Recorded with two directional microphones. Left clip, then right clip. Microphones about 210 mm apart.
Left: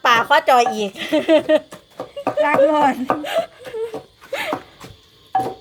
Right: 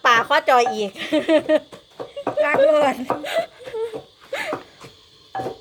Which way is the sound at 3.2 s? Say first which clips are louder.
Left 2 dB; centre (ahead or behind).